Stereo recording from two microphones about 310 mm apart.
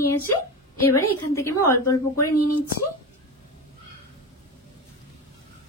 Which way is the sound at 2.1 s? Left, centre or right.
Left.